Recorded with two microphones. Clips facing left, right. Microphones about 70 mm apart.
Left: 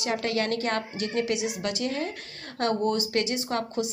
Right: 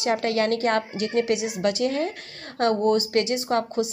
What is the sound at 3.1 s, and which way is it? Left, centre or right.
Speech, right.